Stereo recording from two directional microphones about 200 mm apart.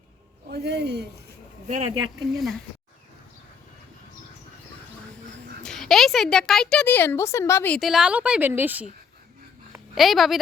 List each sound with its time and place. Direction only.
0.5 s speech: 55° right (ahead or behind)
1.6 s speech: 35° right (ahead or behind)
2.3 s speech: centre (ahead or behind)
5.6 s speech: centre (ahead or behind)
9.9 s speech: centre (ahead or behind)